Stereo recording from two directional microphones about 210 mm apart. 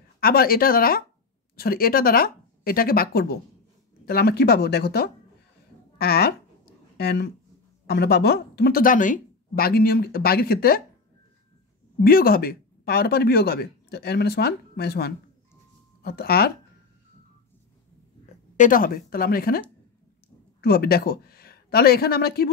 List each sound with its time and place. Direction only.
0.2 s speech: 45° left (ahead or behind)
5.9 s a sound: 50° left (ahead or behind)
7.8 s speech: 50° left (ahead or behind)
12.0 s speech: 45° left (ahead or behind)
18.6 s speech: 40° left (ahead or behind)
20.6 s speech: 45° left (ahead or behind)